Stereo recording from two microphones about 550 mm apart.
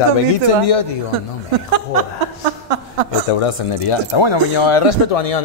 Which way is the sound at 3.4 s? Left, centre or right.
Left.